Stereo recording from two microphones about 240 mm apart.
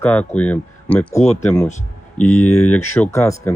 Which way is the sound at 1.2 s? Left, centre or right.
Left.